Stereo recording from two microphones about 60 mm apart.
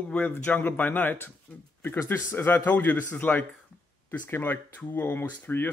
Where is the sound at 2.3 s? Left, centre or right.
Left.